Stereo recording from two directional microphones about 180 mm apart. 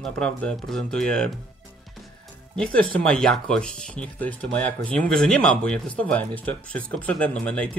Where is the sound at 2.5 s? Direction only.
5° left (ahead or behind).